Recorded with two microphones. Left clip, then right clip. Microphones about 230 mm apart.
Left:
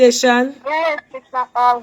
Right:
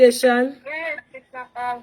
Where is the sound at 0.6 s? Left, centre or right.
Left.